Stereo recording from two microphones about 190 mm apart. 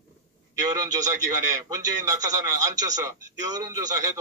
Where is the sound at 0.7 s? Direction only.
20° right (ahead or behind).